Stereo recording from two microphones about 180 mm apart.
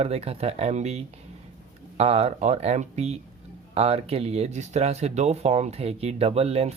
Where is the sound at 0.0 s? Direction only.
35° right (ahead or behind).